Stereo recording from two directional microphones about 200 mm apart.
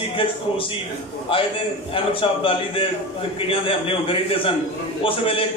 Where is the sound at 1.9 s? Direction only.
25° left (ahead or behind).